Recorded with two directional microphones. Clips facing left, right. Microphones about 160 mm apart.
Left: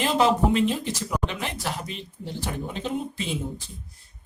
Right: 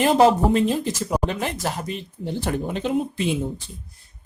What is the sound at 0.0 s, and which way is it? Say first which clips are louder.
Speech: right 5 dB; 45° right (ahead or behind).